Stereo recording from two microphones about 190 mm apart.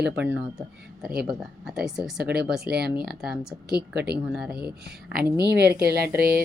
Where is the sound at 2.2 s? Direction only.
50° right (ahead or behind).